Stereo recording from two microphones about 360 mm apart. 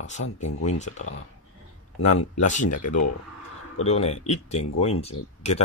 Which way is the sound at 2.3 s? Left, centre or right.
Centre.